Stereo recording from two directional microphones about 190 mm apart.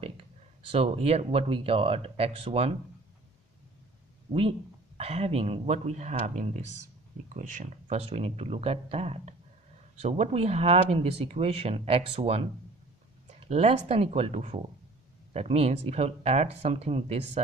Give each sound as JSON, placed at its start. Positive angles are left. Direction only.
{"t": 0.0, "sound": "speech", "side_deg": -30}
{"t": 4.3, "sound": "speech", "side_deg": -30}
{"t": 13.5, "sound": "speech", "side_deg": -30}